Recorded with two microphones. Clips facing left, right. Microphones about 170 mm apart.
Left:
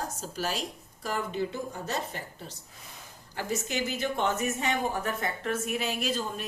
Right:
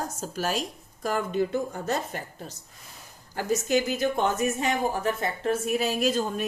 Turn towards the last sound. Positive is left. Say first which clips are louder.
# right 6 dB
turn(degrees=-45)  # may be behind; listen again after turning